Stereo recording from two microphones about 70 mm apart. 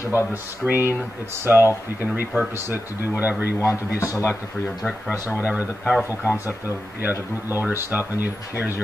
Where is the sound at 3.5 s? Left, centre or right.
Left.